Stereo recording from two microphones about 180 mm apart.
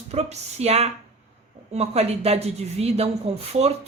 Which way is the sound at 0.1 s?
35° right (ahead or behind).